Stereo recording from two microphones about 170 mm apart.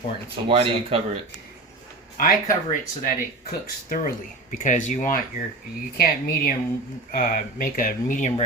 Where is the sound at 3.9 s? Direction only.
50° left (ahead or behind).